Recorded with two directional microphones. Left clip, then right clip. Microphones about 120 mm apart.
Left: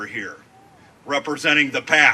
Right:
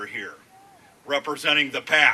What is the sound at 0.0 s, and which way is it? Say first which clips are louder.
Speech: left 3 dB; 30° left (ahead or behind).